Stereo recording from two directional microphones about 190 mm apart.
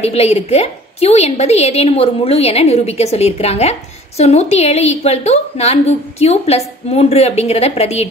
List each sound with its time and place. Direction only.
0.0 s a woman's voice: 30° left (ahead or behind)